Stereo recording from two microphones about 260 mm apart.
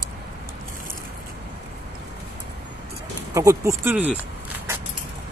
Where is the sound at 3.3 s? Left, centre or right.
Centre.